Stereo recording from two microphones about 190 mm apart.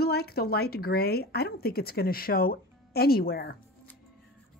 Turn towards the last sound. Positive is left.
turn(degrees=55)  # may be behind; listen again after turning